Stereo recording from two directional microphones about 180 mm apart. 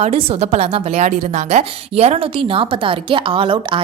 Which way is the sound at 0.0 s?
35° right (ahead or behind).